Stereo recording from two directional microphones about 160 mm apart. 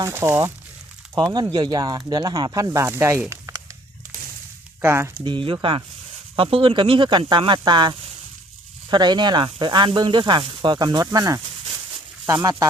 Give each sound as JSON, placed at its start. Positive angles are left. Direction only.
{"t": 0.0, "sound": "speech", "side_deg": -15}
{"t": 1.5, "sound": "speech", "side_deg": -25}
{"t": 4.8, "sound": "speech", "side_deg": -15}
{"t": 5.2, "sound": "speech", "side_deg": -30}